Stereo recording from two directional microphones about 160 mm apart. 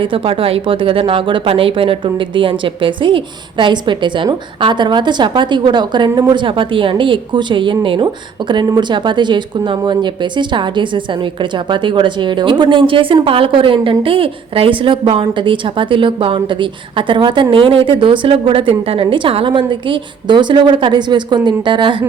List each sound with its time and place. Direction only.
0.0 s speech: 35° right (ahead or behind)